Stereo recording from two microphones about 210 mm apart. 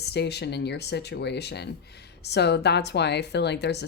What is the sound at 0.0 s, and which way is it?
Speech, 50° left (ahead or behind).